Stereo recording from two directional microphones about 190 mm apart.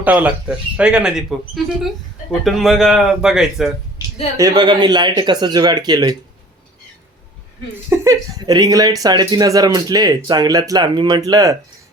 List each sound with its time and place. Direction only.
0.0 s speech: 5° right (ahead or behind)
4.4 s speech: 20° right (ahead or behind)
7.9 s speech: 15° right (ahead or behind)